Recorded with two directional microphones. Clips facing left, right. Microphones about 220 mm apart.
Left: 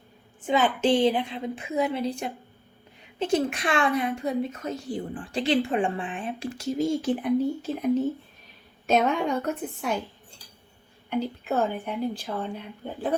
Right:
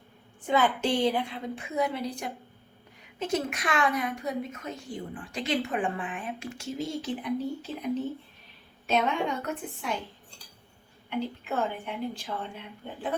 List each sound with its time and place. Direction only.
0.4 s a woman's voice: 20° left (ahead or behind); by 10.0 s 45° left (ahead or behind)
11.1 s a woman's voice: 40° left (ahead or behind)